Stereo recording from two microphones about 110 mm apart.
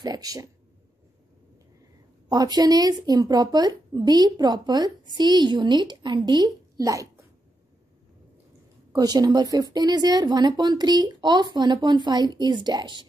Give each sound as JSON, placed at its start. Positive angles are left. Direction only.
{"t": 0.0, "sound": "speech", "side_deg": -35}
{"t": 2.2, "sound": "speech", "side_deg": -35}
{"t": 8.9, "sound": "speech", "side_deg": -40}